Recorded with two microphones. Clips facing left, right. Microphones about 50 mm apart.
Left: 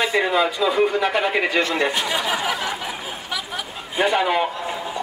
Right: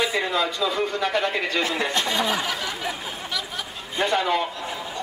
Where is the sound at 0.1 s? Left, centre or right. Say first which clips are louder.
Left 5 dB; centre.